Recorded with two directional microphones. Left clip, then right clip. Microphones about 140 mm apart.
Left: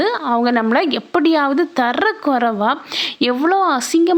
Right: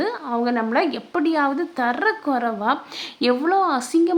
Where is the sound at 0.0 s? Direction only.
35° left (ahead or behind).